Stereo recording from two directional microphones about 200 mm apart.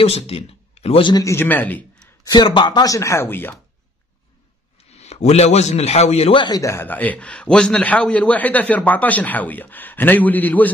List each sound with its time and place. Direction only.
0.0 s a man's voice: 30° left (ahead or behind); by 2.3 s 10° left (ahead or behind)
2.3 s a man's voice: 25° left (ahead or behind)
4.7 s a man's voice: 30° left (ahead or behind); by 10.7 s 10° left (ahead or behind)